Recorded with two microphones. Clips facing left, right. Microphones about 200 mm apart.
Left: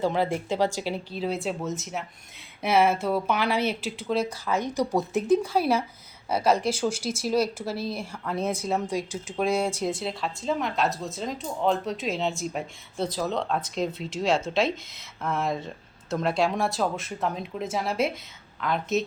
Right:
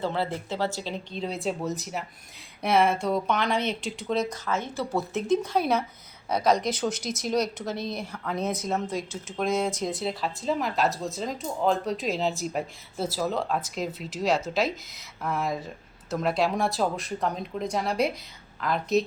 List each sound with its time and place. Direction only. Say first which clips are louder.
0.0 s speech: left 4 dB; 15° left (ahead or behind)
6.6 s speech: left 2 dB; 30° left (ahead or behind)
7.8 s speech: left 1 dB; 5° left (ahead or behind)
10.0 s speech: right 1 dB; centre (ahead or behind)